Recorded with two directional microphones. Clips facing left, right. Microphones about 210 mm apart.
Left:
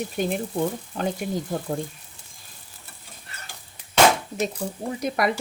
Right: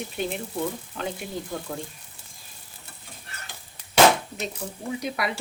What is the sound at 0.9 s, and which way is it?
Frying, 35° left (ahead or behind).